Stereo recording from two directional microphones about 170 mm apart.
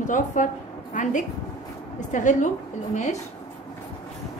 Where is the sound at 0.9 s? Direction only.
50° left (ahead or behind).